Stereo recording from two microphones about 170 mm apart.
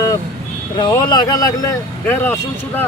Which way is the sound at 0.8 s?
25° left (ahead or behind).